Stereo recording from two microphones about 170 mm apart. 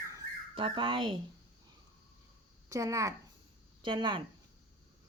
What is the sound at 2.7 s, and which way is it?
Speech, 20° right (ahead or behind).